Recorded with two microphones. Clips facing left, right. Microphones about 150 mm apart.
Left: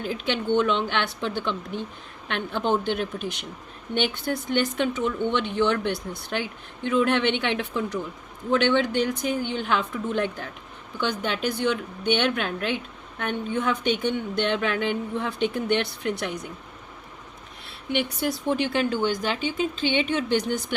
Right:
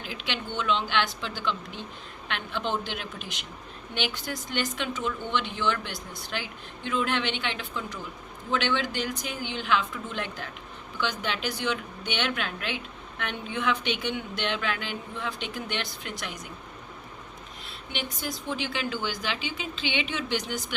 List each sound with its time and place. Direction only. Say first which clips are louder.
0.0 s a woman's voice: left 8 dB; 50° left (ahead or behind); by 7.9 s 65° left (ahead or behind)
8.4 s a woman's voice: left 6 dB; 55° left (ahead or behind)
18.4 s a woman's voice: left 7 dB; 55° left (ahead or behind)